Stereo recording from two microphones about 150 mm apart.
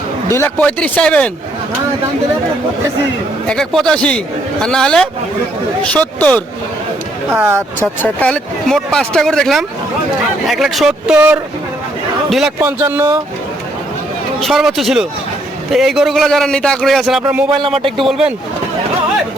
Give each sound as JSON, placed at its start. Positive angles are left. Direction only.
{"t": 0.3, "sound": "speech", "side_deg": 15}
{"t": 3.5, "sound": "speech", "side_deg": 5}
{"t": 7.3, "sound": "speech", "side_deg": -15}
{"t": 8.0, "sound": "speech", "side_deg": 10}
{"t": 12.5, "sound": "speech", "side_deg": -15}
{"t": 14.4, "sound": "speech", "side_deg": 0}
{"t": 17.7, "sound": "speech", "side_deg": -35}
{"t": 18.0, "sound": "speech", "side_deg": -5}